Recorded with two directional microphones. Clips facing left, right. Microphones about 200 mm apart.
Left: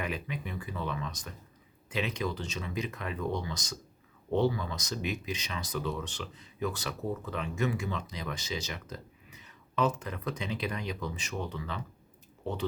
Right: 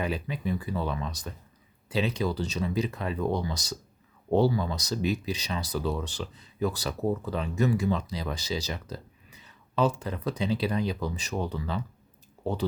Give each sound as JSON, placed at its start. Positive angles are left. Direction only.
{"t": 0.0, "sound": "speech", "side_deg": -35}